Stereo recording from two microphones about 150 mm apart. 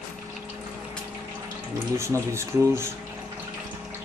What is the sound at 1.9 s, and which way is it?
Speech, 20° right (ahead or behind).